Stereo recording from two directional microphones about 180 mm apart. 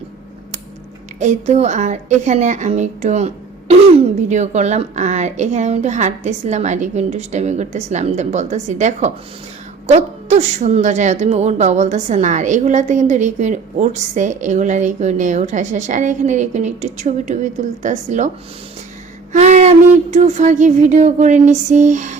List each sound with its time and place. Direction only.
1.2 s speech: 40° right (ahead or behind)
19.3 s a sound: 40° right (ahead or behind)
20.1 s speech: 40° right (ahead or behind)